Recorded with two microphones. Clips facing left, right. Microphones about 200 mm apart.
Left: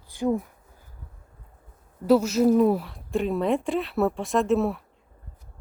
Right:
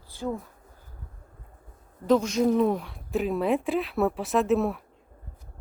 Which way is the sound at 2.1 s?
5° left (ahead or behind).